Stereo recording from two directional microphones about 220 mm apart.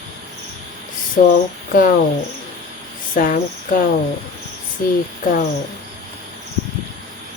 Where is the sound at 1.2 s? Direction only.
40° left (ahead or behind).